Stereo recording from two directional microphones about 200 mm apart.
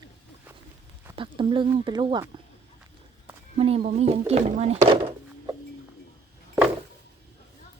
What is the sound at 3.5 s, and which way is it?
Speech, 30° right (ahead or behind).